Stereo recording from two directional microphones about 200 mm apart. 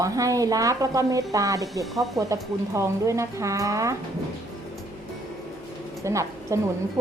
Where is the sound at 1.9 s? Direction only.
Centre (ahead or behind).